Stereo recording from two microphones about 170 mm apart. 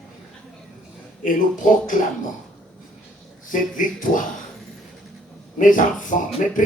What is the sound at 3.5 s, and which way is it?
Speech, 50° left (ahead or behind).